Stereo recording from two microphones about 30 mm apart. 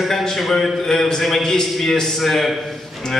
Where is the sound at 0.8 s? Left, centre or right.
Centre.